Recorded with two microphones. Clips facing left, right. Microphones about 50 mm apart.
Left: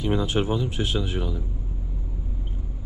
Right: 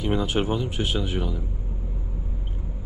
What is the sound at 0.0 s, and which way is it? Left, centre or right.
Speech, right.